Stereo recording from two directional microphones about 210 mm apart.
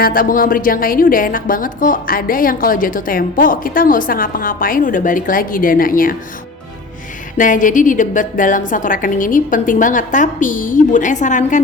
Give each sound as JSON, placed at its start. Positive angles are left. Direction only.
{"t": 0.0, "sound": "a woman's voice", "side_deg": 40}
{"t": 7.3, "sound": "a woman's voice", "side_deg": 40}